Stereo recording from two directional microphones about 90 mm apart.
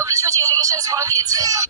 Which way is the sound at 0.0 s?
40° right (ahead or behind).